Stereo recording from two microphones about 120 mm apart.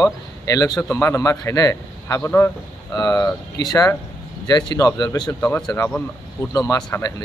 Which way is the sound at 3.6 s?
35° left (ahead or behind).